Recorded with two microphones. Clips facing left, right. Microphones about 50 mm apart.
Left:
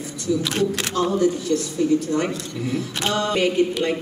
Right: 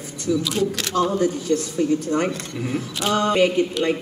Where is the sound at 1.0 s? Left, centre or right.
Right.